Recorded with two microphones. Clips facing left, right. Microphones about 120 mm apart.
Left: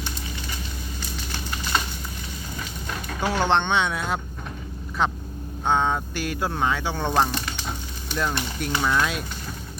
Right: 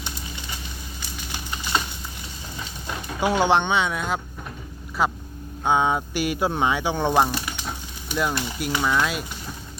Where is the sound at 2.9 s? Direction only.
15° right (ahead or behind).